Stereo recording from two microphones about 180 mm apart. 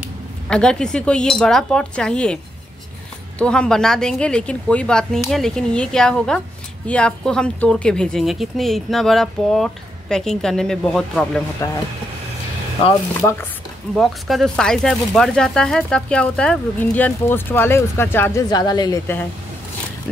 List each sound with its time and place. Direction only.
0.5 s speech: 5° left (ahead or behind)
13.9 s speech: centre (ahead or behind)
18.5 s a woman's voice: 25° left (ahead or behind)